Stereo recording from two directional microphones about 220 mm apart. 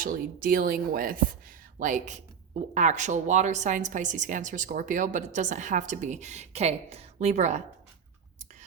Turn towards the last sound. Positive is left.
turn(degrees=-30)  # may be behind; listen again after turning